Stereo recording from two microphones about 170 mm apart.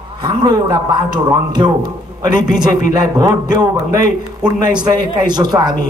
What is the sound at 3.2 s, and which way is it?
Speech, 25° right (ahead or behind).